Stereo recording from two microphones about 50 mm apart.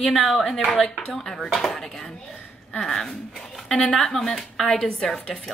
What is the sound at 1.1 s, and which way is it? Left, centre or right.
Speech, centre.